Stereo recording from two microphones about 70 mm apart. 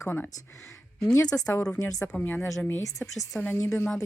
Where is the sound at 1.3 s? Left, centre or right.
Left.